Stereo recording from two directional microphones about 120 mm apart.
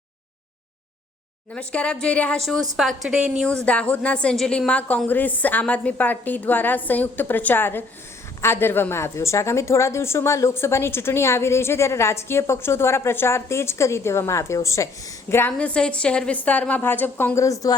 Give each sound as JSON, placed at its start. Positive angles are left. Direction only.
{"t": 1.5, "sound": "a woman's voice", "side_deg": 10}
{"t": 3.4, "sound": "a woman's voice", "side_deg": 10}
{"t": 15.5, "sound": "a woman's voice", "side_deg": 10}